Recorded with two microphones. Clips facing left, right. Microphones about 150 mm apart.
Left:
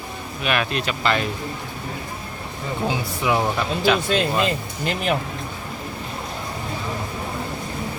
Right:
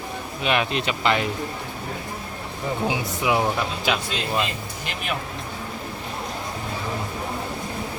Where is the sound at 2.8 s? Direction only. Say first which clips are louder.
Left 2 dB; 15° right (ahead or behind).